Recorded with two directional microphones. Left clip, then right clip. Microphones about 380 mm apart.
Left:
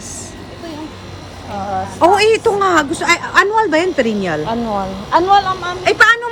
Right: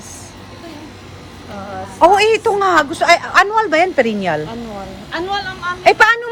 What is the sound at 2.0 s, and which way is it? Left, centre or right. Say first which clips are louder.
A man's voice: right 1 dB; centre.